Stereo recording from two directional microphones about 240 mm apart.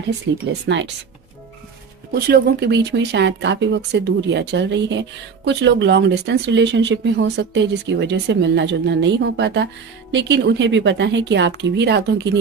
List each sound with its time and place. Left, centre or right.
0.5 s speech: right
2.1 s speech: right